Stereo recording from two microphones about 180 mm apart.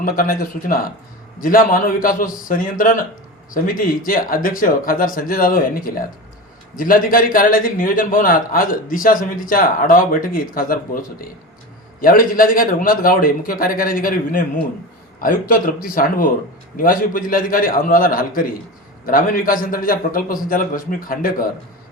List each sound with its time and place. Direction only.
0.0 s a man's voice: 50° left (ahead or behind)